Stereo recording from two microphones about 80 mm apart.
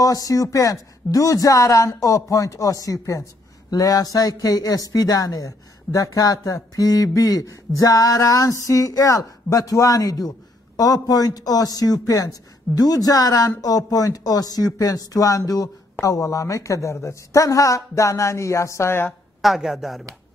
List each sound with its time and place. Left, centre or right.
0.0 s a man's voice: left
19.4 s speech: centre